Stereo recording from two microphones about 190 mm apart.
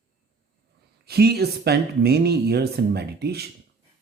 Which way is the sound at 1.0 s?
55° right (ahead or behind).